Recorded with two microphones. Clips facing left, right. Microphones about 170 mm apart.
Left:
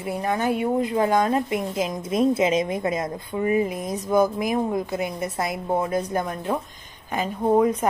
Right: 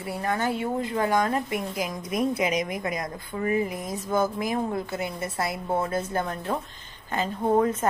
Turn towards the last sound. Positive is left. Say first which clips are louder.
# left 3 dB
turn(degrees=10)  # may be behind; listen again after turning